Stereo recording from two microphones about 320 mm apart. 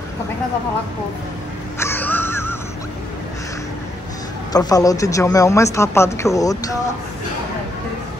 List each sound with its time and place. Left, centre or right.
1.8 s caw: centre
4.5 s a man's voice: centre